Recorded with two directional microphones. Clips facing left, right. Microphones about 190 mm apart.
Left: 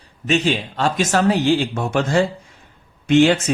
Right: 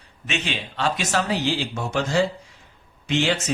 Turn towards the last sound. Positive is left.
turn(degrees=55)  # may be behind; listen again after turning